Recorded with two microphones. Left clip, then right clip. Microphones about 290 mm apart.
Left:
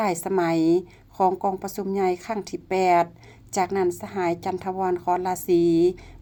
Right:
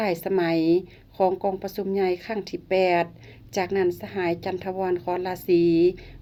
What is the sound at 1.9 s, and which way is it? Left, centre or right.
Speech, left.